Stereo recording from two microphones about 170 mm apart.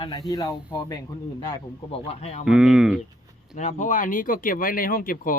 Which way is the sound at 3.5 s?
45° left (ahead or behind).